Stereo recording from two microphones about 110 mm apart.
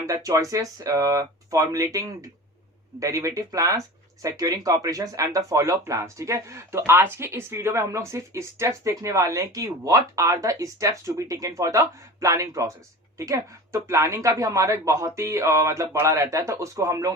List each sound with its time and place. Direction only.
0.1 s speech: 30° right (ahead or behind)